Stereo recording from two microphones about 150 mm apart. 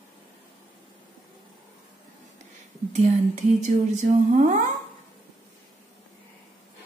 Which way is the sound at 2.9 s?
50° right (ahead or behind).